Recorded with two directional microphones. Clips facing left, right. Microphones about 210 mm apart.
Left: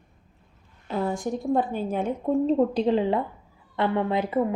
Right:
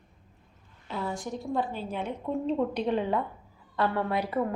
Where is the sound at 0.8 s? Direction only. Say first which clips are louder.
Left 7 dB; 45° left (ahead or behind).